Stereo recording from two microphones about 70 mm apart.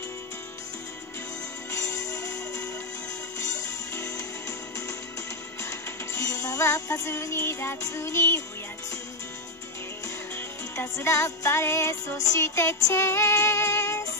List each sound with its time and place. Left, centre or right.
1.7 s music: left
10.0 s music: left